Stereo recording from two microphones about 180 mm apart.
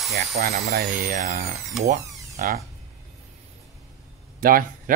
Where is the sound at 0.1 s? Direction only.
60° right (ahead or behind).